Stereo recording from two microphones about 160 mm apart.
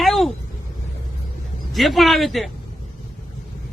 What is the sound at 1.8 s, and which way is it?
Speech, centre (ahead or behind).